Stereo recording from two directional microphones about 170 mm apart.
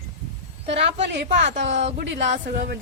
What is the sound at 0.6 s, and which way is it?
Speech, 40° right (ahead or behind).